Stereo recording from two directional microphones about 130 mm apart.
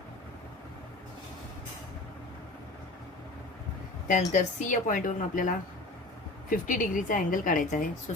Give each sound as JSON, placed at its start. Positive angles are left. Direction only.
{"t": 4.3, "sound": "a woman's voice", "side_deg": 85}